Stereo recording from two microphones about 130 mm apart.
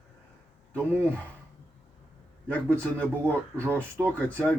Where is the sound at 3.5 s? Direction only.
20° right (ahead or behind).